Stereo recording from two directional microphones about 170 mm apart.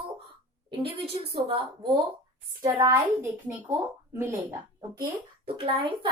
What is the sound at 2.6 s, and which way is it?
Speech, 20° right (ahead or behind).